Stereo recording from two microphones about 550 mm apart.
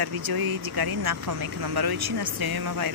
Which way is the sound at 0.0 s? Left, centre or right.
Right.